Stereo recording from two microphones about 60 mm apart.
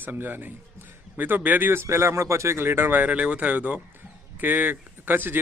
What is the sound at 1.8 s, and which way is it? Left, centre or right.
Speech, right.